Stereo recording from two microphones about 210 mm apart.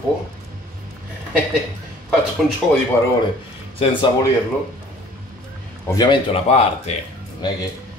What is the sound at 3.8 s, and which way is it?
Speech, 25° left (ahead or behind).